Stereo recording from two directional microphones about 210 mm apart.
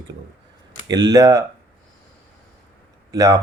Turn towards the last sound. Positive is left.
turn(degrees=-15)  # may be behind; listen again after turning